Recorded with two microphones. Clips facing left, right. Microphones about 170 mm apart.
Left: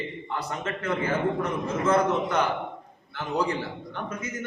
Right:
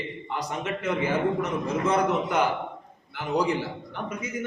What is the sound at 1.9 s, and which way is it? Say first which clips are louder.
Speech: left 2 dB; 15° right (ahead or behind).